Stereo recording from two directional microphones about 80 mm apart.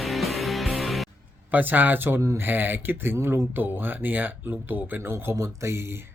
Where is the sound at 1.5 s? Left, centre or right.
Right.